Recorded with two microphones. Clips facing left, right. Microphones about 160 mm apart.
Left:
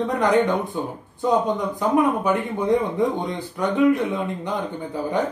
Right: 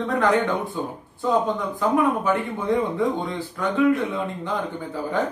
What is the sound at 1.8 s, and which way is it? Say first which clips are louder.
Speech: left 1 dB; 20° left (ahead or behind).